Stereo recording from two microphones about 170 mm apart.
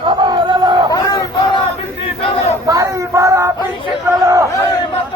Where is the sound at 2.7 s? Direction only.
20° right (ahead or behind).